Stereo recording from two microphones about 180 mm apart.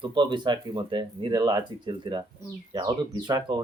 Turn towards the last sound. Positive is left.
turn(degrees=-25)  # may be behind; listen again after turning